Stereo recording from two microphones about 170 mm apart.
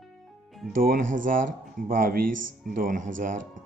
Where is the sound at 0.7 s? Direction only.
55° right (ahead or behind).